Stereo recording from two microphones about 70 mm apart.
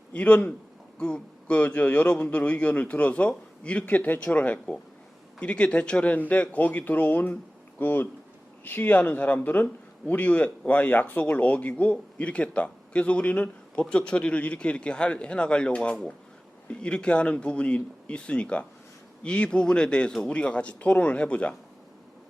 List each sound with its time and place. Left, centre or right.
0.1 s a man's voice: left